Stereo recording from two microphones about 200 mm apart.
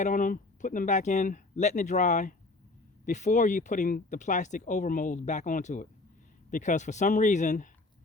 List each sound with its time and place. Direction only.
0.0 s speech: 40° left (ahead or behind)